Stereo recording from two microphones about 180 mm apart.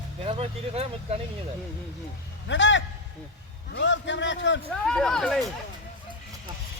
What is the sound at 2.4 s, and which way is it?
A man's voice, 90° left.